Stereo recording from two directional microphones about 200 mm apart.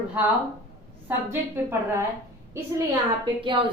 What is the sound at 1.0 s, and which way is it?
A woman's voice, 10° right (ahead or behind).